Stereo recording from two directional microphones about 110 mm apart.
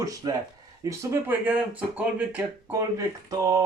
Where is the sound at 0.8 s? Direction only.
30° right (ahead or behind).